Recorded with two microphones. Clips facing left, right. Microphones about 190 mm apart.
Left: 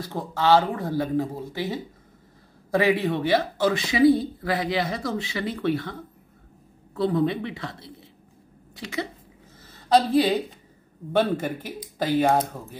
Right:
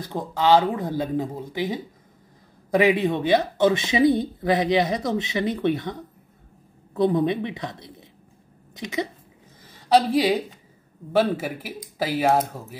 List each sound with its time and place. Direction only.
0.0 s a woman's voice: 15° right (ahead or behind)